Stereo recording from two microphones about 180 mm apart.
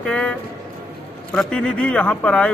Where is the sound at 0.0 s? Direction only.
5° left (ahead or behind).